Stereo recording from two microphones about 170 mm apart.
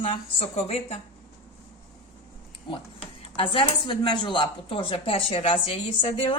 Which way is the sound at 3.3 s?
30° left (ahead or behind).